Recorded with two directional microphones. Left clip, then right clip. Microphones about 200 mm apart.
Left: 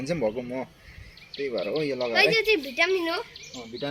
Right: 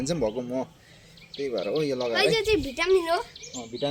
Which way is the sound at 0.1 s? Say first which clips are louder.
Left 1 dB; 5° right (ahead or behind).